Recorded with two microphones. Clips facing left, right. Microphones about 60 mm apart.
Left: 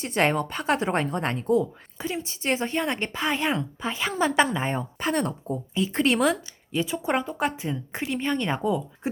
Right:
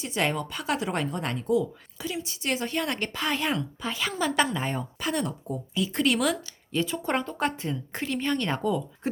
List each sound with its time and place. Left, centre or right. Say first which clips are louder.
0.0 s a woman's voice: left 4 dB; left
6.7 s a woman's voice: left 2 dB; centre